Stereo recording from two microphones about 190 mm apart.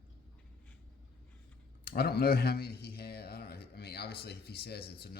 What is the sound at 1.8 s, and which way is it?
Speech, 55° left (ahead or behind).